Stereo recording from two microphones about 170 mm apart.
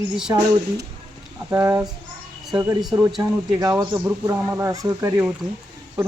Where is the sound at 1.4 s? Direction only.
20° right (ahead or behind).